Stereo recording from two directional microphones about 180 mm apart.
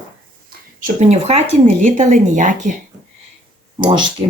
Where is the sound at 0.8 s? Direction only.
40° right (ahead or behind).